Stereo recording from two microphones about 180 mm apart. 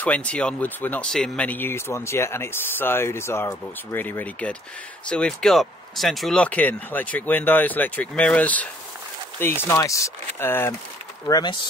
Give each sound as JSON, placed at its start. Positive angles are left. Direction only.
{"t": 0.0, "sound": "speech", "side_deg": 5}